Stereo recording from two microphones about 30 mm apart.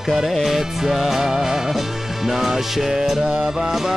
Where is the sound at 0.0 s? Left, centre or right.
Centre.